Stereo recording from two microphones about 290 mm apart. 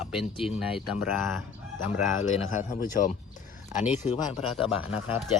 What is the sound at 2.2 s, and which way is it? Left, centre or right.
A man's voice, left.